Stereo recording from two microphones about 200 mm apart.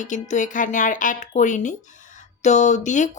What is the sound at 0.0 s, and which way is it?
Speech, 40° left (ahead or behind).